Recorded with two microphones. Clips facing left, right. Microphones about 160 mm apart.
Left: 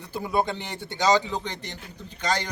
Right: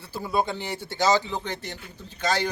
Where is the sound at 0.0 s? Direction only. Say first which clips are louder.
Left 1 dB; 15° left (ahead or behind).